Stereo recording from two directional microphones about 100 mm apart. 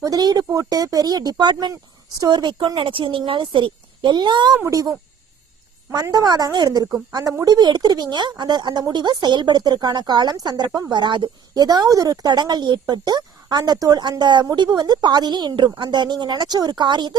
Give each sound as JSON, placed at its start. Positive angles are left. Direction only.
{"t": 0.0, "sound": "speech", "side_deg": -40}
{"t": 4.5, "sound": "speech", "side_deg": -35}